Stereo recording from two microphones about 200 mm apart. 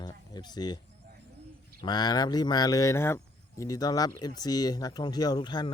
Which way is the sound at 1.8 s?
20° left (ahead or behind).